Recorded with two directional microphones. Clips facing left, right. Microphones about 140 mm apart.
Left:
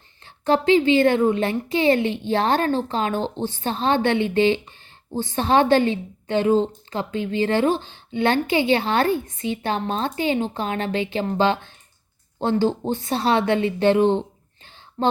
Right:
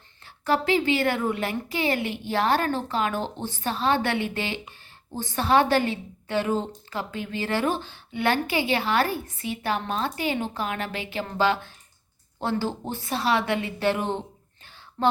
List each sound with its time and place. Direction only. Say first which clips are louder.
0.4 s a woman's voice: left 6 dB; 25° left (ahead or behind)